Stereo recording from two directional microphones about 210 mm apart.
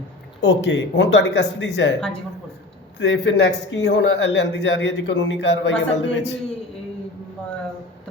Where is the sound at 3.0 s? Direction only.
55° left (ahead or behind).